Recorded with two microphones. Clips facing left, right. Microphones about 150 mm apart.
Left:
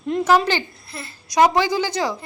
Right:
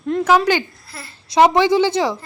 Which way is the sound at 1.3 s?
25° right (ahead or behind).